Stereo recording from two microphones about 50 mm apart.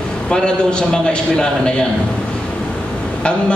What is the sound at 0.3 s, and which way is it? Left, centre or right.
A man's voice, centre.